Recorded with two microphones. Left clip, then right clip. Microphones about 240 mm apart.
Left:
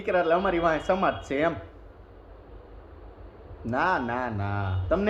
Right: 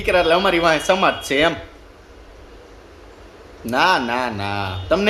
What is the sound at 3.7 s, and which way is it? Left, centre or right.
Speech, centre.